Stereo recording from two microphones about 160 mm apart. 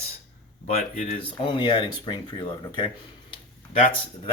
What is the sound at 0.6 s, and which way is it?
Speech, 45° left (ahead or behind).